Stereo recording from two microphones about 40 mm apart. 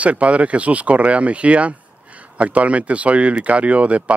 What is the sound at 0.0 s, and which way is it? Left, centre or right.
Speech, right.